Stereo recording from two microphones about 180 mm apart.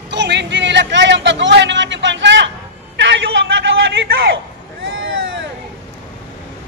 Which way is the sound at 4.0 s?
70° right (ahead or behind).